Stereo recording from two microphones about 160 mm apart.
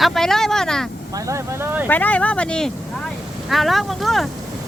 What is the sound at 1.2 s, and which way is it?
Speech, 15° right (ahead or behind).